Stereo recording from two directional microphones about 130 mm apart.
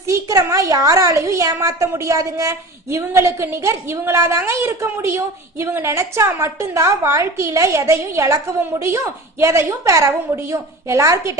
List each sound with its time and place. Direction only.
0.1 s a woman's voice: 25° right (ahead or behind)